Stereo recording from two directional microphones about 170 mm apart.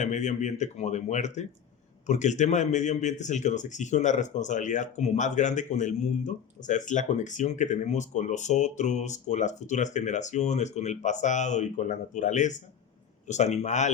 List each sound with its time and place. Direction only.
0.0 s speech: 45° left (ahead or behind)